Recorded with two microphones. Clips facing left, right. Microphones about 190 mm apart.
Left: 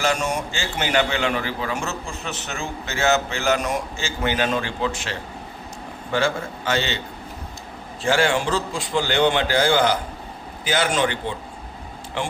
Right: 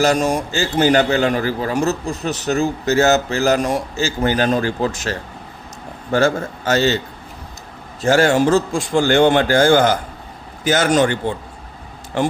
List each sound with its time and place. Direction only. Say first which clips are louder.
0.0 s a man's voice: right 7 dB; 35° right (ahead or behind)
8.0 s a man's voice: right 6 dB; 40° right (ahead or behind)